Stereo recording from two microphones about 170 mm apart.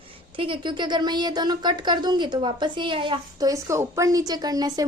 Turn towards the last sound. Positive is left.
turn(degrees=-20)  # may be behind; listen again after turning